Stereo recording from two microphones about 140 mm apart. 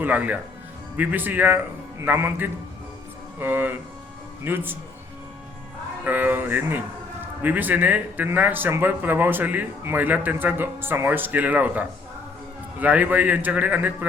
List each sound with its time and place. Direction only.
0.0 s speech: 10° right (ahead or behind)
6.1 s speech: 15° right (ahead or behind)